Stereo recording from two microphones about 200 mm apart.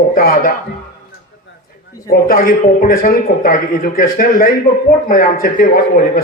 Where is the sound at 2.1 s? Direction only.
45° left (ahead or behind).